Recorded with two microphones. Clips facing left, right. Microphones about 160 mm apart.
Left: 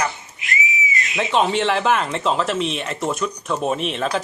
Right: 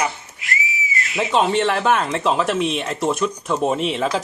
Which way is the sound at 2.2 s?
10° right (ahead or behind).